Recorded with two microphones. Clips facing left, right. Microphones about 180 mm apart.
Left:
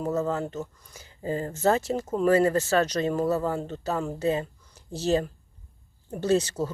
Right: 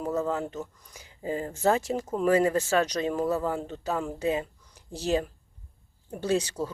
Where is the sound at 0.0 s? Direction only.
10° right (ahead or behind).